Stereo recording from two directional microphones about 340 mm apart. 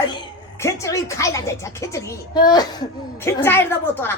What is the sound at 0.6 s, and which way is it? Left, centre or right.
A woman's voice, centre.